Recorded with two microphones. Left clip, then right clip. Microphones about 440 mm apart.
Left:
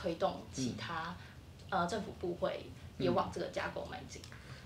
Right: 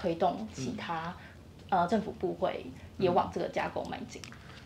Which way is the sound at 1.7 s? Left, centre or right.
Right.